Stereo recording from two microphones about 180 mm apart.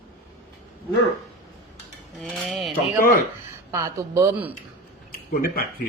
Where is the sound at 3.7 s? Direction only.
15° right (ahead or behind).